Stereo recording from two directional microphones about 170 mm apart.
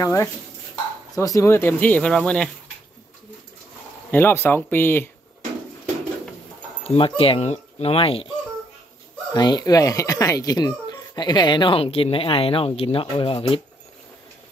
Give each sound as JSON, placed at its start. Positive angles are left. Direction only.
{"t": 0.0, "sound": "speech", "side_deg": 15}
{"t": 4.1, "sound": "speech", "side_deg": 15}
{"t": 6.8, "sound": "speech", "side_deg": 35}
{"t": 9.3, "sound": "speech", "side_deg": 25}